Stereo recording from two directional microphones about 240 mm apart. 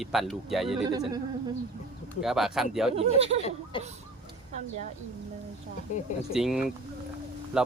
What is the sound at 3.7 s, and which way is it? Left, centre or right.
Speech, left.